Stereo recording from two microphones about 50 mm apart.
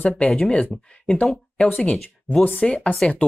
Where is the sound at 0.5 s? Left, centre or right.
Left.